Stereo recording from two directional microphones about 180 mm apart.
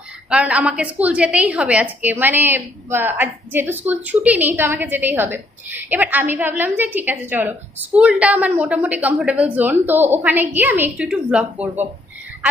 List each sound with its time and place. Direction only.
0.3 s a woman's voice: 5° right (ahead or behind)